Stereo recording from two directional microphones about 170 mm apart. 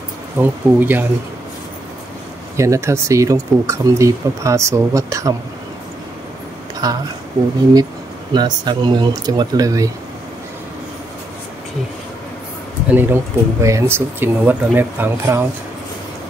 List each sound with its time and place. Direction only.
0.4 s speech: 10° right (ahead or behind)
2.5 s speech: 15° right (ahead or behind)
6.8 s speech: 20° right (ahead or behind)
8.3 s speech: 25° right (ahead or behind)
12.9 s speech: 15° right (ahead or behind)